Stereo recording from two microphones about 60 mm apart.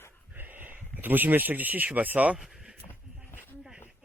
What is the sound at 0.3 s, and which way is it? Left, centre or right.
Speech, right.